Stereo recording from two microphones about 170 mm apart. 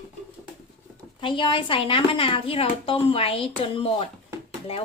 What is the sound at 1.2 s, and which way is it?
A woman's voice, 30° left (ahead or behind).